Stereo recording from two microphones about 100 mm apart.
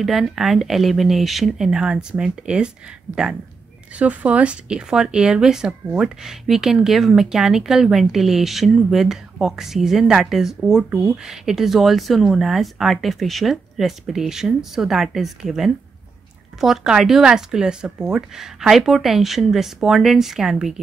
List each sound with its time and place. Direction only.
0.0 s speech: centre (ahead or behind)
4.0 s speech: 15° right (ahead or behind)
10.9 s speech: 15° right (ahead or behind)
11.2 s speech: 5° right (ahead or behind)